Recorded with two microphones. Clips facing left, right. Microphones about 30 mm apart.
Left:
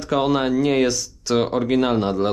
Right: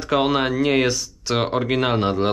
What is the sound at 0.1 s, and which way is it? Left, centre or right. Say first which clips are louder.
Speech: even; right.